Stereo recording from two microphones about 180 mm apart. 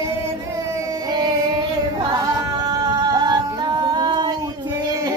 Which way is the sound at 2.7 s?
25° right (ahead or behind).